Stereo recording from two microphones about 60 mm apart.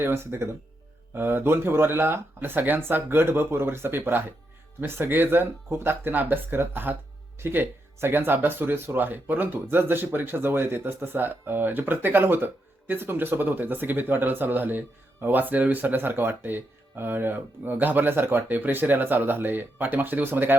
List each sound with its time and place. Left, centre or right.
0.0 s speech: right